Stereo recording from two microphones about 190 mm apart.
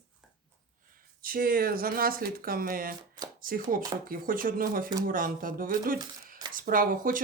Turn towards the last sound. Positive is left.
turn(degrees=-45)  # may be behind; listen again after turning